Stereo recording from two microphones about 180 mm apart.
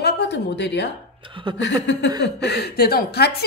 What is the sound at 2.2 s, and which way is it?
Speech, 65° left (ahead or behind).